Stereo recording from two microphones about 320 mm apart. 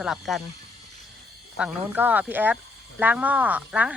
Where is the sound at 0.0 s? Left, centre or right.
Centre.